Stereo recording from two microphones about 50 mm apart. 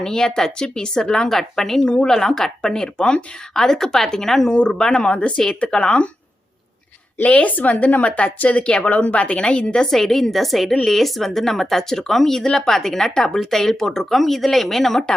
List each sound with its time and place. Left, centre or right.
0.0 s speech: centre
7.3 s speech: left; by 15.0 s centre